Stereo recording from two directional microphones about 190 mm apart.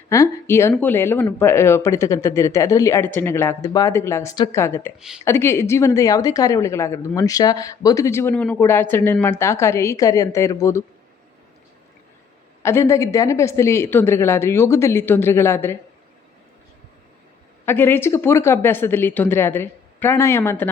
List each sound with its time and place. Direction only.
0.1 s speech: 15° left (ahead or behind)
4.9 s speech: 5° right (ahead or behind)
5.2 s speech: 15° left (ahead or behind)
12.6 s speech: 15° left (ahead or behind)
17.7 s speech: 10° left (ahead or behind)